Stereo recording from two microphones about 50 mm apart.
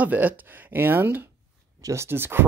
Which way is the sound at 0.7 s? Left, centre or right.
Right.